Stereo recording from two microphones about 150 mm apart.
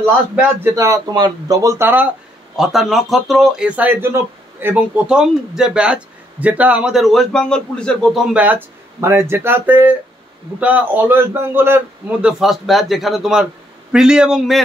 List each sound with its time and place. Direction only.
0.4 s speech: 20° right (ahead or behind)
2.5 s speech: centre (ahead or behind)